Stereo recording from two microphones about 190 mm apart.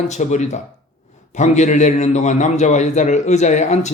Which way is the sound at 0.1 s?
40° left (ahead or behind).